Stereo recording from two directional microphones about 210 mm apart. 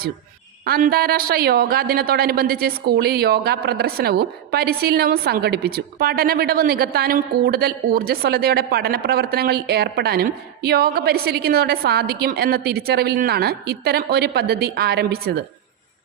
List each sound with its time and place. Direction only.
0.6 s a woman's voice: 45° right (ahead or behind)